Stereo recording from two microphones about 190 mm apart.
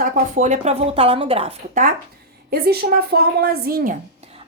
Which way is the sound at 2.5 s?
55° right (ahead or behind).